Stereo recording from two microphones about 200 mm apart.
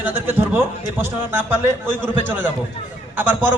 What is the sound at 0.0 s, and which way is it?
A man's voice, 10° right (ahead or behind).